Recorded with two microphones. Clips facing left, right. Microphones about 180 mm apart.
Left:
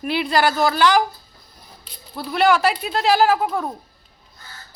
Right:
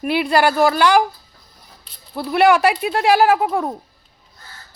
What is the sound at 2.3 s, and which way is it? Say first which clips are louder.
Speech: right 3 dB; 60° right (ahead or behind).